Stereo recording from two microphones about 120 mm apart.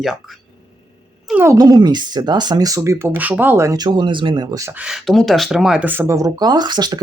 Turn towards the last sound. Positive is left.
turn(degrees=-35)  # may be behind; listen again after turning